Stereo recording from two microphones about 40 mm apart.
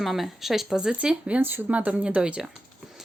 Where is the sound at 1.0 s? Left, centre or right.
Right.